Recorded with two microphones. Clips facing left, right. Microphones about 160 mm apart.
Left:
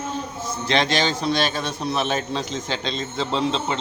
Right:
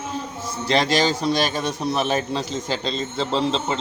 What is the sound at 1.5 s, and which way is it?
Speech, 10° right (ahead or behind).